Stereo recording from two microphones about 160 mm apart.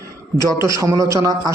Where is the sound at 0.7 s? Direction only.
20° right (ahead or behind).